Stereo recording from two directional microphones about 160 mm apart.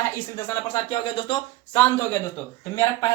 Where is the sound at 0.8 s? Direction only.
30° left (ahead or behind).